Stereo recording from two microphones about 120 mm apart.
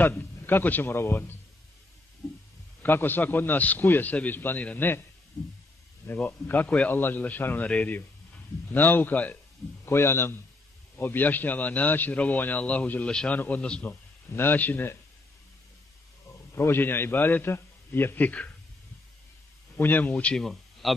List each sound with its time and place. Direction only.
0.0 s a man's voice: 15° left (ahead or behind)
2.8 s a man's voice: 15° left (ahead or behind)
6.0 s a man's voice: 15° left (ahead or behind)
16.5 s a man's voice: 20° left (ahead or behind)
19.8 s a man's voice: 15° left (ahead or behind)